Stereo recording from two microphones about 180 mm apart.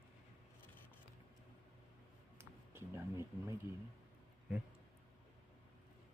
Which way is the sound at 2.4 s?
15° right (ahead or behind).